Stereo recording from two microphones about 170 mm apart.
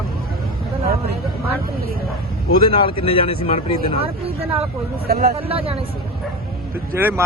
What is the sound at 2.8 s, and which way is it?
Speech, 35° left (ahead or behind).